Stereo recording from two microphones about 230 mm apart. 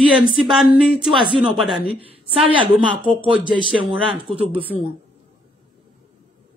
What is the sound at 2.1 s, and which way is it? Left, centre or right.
A woman's voice, right.